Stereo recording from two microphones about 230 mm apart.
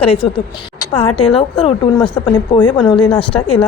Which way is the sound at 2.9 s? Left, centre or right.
Centre.